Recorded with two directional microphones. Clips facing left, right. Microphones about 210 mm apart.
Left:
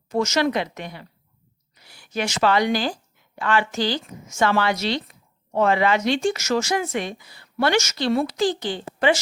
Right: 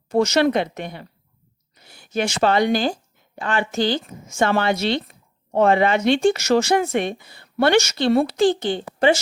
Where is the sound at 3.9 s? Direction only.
25° right (ahead or behind).